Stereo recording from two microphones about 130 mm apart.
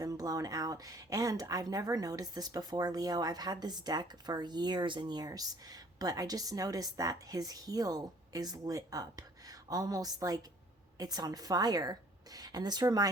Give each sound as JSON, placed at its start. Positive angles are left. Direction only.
{"t": 0.0, "sound": "a woman's voice", "side_deg": -25}